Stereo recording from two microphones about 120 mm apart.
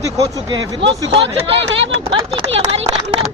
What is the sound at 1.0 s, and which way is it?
Speech, 55° right (ahead or behind).